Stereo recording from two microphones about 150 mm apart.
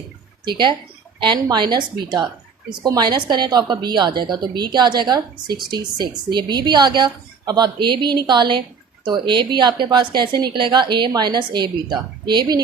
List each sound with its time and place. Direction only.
0.4 s speech: 30° right (ahead or behind)